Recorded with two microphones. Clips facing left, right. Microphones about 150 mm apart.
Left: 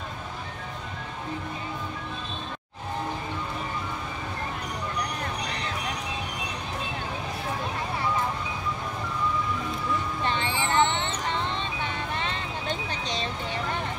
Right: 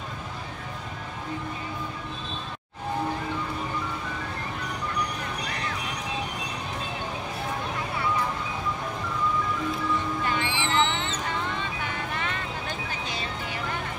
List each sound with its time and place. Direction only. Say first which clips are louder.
10.2 s music: even; 25° left (ahead or behind)